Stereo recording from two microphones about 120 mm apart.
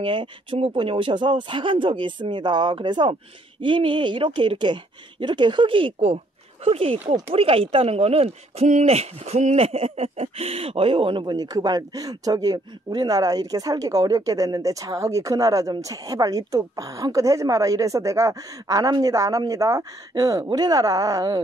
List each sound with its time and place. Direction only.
0.0 s speech: 45° right (ahead or behind)